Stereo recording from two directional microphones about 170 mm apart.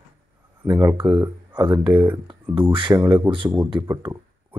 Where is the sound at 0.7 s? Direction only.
20° right (ahead or behind).